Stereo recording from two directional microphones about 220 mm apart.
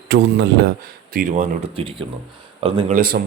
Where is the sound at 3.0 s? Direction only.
45° right (ahead or behind).